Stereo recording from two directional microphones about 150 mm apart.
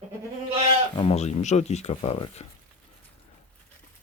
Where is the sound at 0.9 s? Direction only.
40° left (ahead or behind).